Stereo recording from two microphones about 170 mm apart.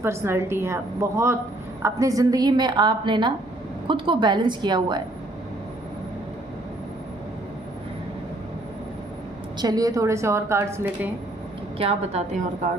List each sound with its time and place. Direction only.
0.0 s a woman's voice: 15° right (ahead or behind)
9.6 s a woman's voice: 20° right (ahead or behind)
11.8 s a woman's voice: 35° right (ahead or behind)